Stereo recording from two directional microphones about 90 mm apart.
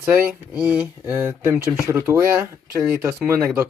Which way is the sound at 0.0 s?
20° right (ahead or behind).